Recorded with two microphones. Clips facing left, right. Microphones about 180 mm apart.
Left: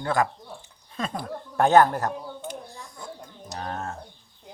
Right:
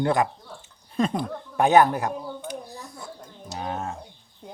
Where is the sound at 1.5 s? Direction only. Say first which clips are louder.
Even; 15° right (ahead or behind).